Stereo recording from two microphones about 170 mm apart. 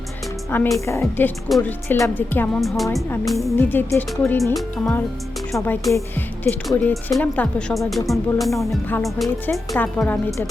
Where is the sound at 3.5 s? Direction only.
15° left (ahead or behind).